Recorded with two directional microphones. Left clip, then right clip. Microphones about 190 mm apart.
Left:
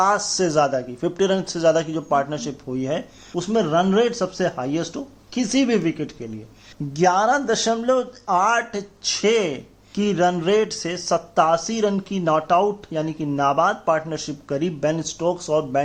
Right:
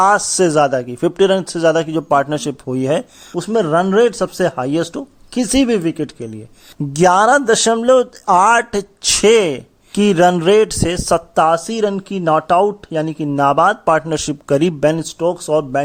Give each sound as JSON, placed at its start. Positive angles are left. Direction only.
{"t": 0.0, "sound": "a man's voice", "side_deg": -50}
{"t": 6.9, "sound": "a man's voice", "side_deg": -60}